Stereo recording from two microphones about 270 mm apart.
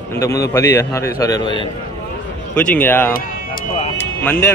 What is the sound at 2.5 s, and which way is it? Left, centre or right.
Speech, centre.